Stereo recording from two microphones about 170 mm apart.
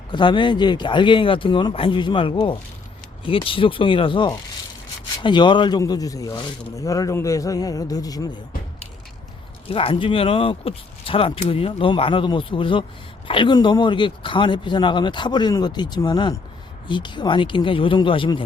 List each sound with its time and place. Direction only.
0.1 s speech: 25° left (ahead or behind)
9.6 s speech: 35° left (ahead or behind)